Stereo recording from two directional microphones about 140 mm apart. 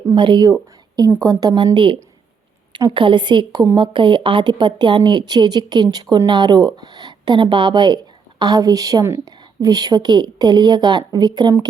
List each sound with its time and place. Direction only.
0.2 s a woman's voice: 30° right (ahead or behind)